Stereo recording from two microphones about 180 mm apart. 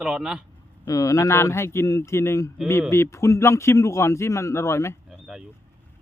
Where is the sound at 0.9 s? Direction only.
20° left (ahead or behind).